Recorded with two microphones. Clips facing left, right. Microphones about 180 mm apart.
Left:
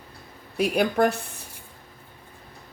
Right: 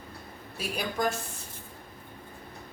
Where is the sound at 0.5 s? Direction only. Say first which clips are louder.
Left 11 dB; 60° left (ahead or behind).